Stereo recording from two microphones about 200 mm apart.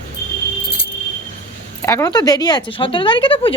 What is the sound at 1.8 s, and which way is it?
Speech, 15° left (ahead or behind).